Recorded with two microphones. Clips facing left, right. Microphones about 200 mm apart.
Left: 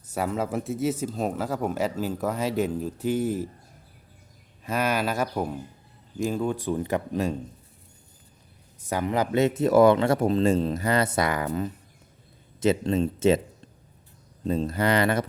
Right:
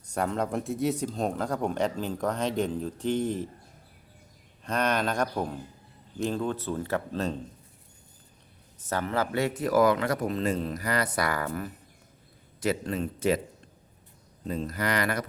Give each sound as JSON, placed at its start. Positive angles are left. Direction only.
{"t": 0.1, "sound": "speech", "side_deg": 5}
{"t": 4.6, "sound": "speech", "side_deg": 5}
{"t": 8.9, "sound": "speech", "side_deg": 15}
{"t": 14.4, "sound": "speech", "side_deg": 30}